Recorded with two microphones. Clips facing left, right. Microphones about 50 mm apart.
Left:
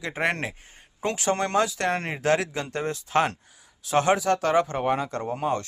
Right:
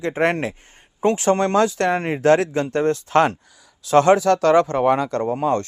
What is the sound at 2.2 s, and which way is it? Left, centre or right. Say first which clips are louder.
Speech: right 8 dB; right.